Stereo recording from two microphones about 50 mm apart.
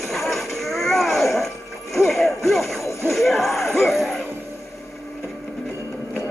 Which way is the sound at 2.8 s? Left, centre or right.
Left.